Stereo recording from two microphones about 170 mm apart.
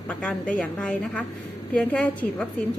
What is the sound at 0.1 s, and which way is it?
A woman's voice, 5° left (ahead or behind).